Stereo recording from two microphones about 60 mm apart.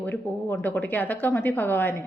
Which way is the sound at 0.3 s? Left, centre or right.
Left.